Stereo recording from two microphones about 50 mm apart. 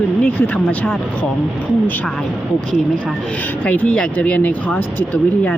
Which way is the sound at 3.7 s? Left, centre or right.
Left.